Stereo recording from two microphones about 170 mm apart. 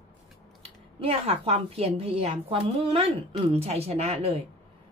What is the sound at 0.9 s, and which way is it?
A woman's voice, 35° right (ahead or behind).